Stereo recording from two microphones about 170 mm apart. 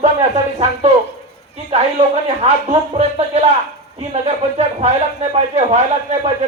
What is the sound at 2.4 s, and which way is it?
Speech, 35° right (ahead or behind).